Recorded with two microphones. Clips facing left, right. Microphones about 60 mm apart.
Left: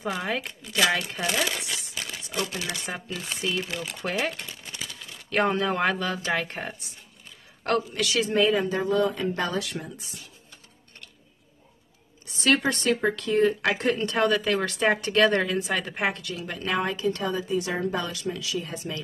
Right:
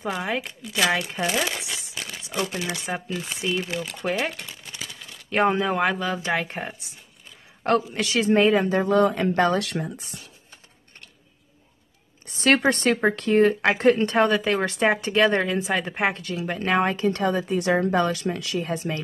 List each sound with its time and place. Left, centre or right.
0.0 s speech: centre
1.9 s a sound: centre
2.1 s crumpling: centre
2.9 s speech: centre
4.8 s a sound: centre
5.3 s speech: centre
7.7 s speech: right
8.5 s speech: right
12.3 s speech: right
14.8 s a woman's voice: centre; by 19.0 s right